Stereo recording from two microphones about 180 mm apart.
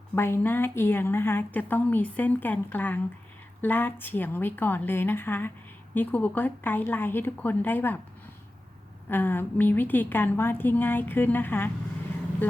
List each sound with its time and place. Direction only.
0.2 s a woman's voice: 15° left (ahead or behind)
9.0 s a woman's voice: 10° left (ahead or behind)